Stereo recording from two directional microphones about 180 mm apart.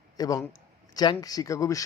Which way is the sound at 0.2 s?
20° left (ahead or behind).